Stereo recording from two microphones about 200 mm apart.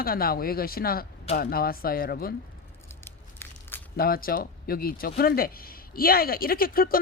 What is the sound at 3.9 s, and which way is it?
Speech, 50° left (ahead or behind).